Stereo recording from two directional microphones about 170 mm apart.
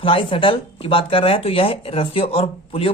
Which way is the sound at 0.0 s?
30° left (ahead or behind).